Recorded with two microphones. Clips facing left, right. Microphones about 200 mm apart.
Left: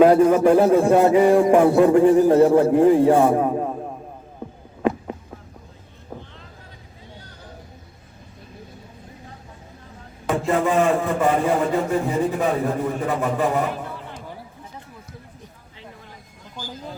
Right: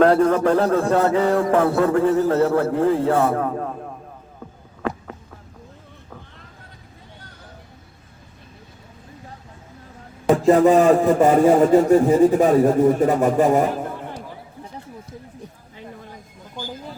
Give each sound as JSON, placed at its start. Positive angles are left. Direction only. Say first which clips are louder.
{"t": 0.0, "sound": "a man's voice", "louder": "left 2 dB", "side_deg": 10}
{"t": 4.4, "sound": "a sound", "louder": "left 4 dB", "side_deg": 20}
{"t": 10.2, "sound": "a man's voice", "louder": "right 7 dB", "side_deg": -40}